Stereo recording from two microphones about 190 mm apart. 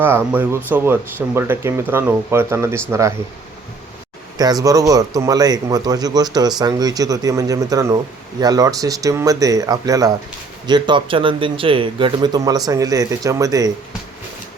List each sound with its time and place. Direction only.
0.0 s speech: 10° right (ahead or behind)
4.4 s speech: 20° right (ahead or behind)